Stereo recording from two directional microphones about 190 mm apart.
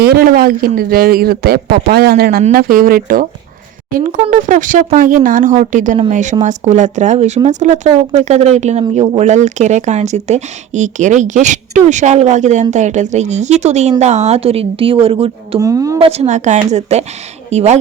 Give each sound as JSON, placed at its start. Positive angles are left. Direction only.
{"t": 0.0, "sound": "speech", "side_deg": -55}
{"t": 15.5, "sound": "speech", "side_deg": -20}
{"t": 16.0, "sound": "speech", "side_deg": -30}